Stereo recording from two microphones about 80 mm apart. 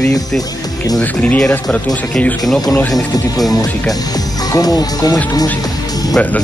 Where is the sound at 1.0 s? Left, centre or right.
Centre.